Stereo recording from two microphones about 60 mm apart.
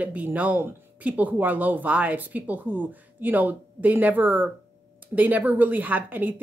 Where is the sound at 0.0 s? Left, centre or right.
Right.